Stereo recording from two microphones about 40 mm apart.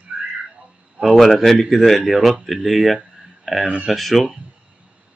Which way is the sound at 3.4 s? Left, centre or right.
Centre.